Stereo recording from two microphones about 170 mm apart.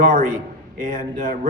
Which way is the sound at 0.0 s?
50° right (ahead or behind).